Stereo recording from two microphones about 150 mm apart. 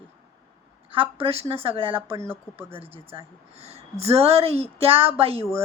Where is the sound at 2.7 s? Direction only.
40° right (ahead or behind).